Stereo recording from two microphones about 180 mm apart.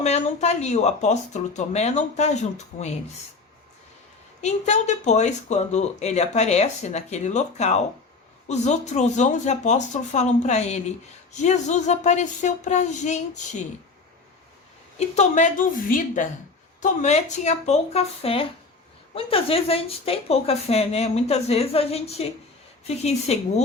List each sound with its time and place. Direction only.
0.0 s speech: 40° left (ahead or behind)
4.4 s speech: 40° left (ahead or behind)
14.9 s a woman's voice: 40° left (ahead or behind)